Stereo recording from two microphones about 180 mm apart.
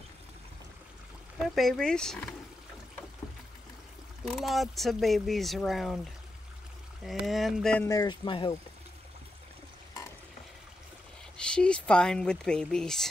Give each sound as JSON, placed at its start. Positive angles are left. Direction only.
{"t": 1.4, "sound": "speech", "side_deg": 0}
{"t": 4.2, "sound": "speech", "side_deg": 0}
{"t": 7.1, "sound": "speech", "side_deg": 0}
{"t": 7.9, "sound": "speech", "side_deg": 20}
{"t": 11.3, "sound": "speech", "side_deg": 5}